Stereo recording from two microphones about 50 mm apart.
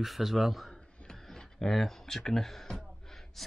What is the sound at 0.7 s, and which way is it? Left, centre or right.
Speech, centre.